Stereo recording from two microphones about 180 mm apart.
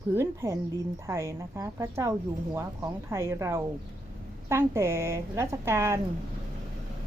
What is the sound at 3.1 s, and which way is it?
Speech, 15° right (ahead or behind).